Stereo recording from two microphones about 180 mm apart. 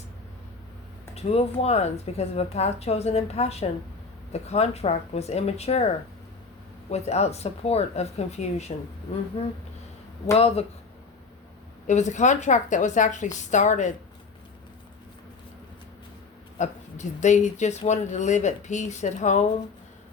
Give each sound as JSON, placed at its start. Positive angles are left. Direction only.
{"t": 1.1, "sound": "speech", "side_deg": 35}
{"t": 6.9, "sound": "speech", "side_deg": 35}
{"t": 10.3, "sound": "speech", "side_deg": 35}
{"t": 11.9, "sound": "a woman's voice", "side_deg": 40}
{"t": 16.6, "sound": "speech", "side_deg": 40}